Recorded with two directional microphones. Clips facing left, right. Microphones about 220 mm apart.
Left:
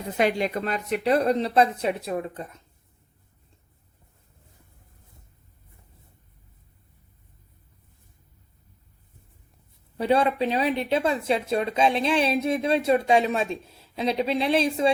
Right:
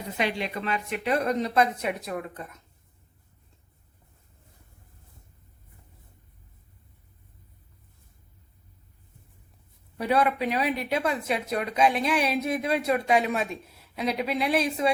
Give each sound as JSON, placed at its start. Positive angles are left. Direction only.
{"t": 0.2, "sound": "speech", "side_deg": 45}
{"t": 10.0, "sound": "speech", "side_deg": 30}